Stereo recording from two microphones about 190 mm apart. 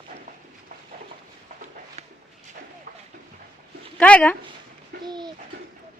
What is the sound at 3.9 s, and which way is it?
Speech, 5° left (ahead or behind).